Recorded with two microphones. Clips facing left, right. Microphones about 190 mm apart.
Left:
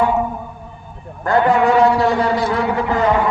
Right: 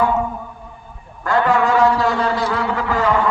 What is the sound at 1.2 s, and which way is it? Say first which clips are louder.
A man's voice: left 2 dB; 20° left (ahead or behind).